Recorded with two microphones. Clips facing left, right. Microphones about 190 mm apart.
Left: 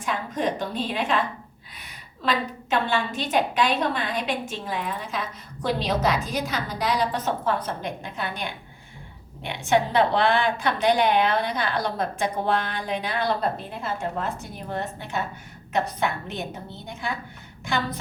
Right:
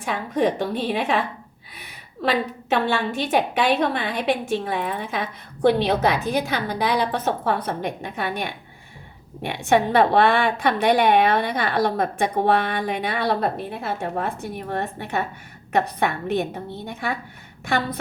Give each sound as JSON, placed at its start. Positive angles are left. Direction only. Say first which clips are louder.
{"t": 0.0, "sound": "a woman's voice", "louder": "right 5 dB", "side_deg": -60}
{"t": 2.6, "sound": "a woman's voice", "louder": "right 2 dB", "side_deg": -60}